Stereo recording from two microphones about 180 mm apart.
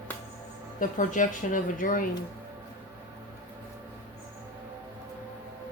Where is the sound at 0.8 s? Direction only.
45° left (ahead or behind).